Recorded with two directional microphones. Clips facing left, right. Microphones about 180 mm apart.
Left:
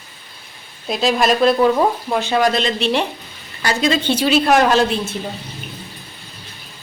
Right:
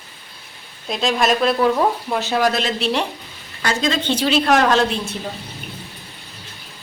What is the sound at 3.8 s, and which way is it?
Speech, 10° left (ahead or behind).